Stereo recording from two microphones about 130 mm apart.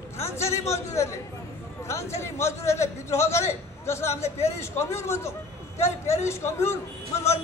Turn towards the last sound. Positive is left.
turn(degrees=20)  # may be behind; listen again after turning